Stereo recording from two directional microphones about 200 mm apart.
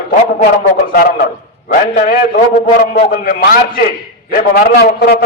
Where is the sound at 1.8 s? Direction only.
45° left (ahead or behind).